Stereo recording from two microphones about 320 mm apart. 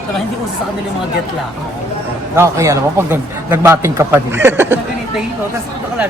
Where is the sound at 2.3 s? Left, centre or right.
Centre.